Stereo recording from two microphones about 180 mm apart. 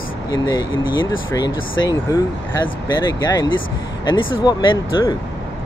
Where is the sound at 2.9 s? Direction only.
20° left (ahead or behind).